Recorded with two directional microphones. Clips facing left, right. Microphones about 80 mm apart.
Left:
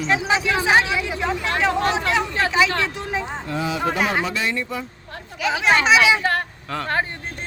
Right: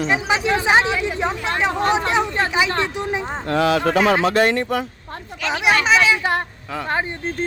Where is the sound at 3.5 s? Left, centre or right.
Right.